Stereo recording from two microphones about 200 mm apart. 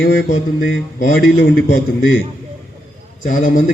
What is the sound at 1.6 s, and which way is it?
Speech, 50° left (ahead or behind).